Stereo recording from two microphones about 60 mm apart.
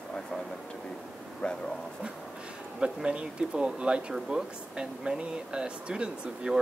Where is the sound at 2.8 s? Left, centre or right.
Centre.